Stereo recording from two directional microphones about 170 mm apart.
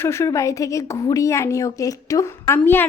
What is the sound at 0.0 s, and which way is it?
A woman's voice, 15° left (ahead or behind).